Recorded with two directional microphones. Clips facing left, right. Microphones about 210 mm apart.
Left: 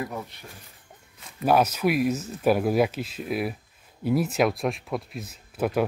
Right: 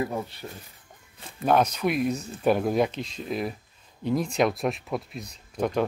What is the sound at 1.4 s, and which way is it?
Speech, 5° left (ahead or behind).